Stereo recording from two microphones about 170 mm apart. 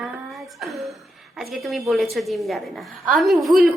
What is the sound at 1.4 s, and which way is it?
A woman's voice, centre (ahead or behind).